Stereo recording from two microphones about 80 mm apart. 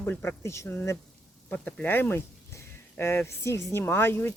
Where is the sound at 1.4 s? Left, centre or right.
Left.